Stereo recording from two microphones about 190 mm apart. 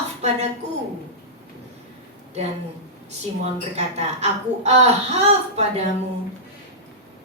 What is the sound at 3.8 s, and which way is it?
A woman's voice, 35° right (ahead or behind).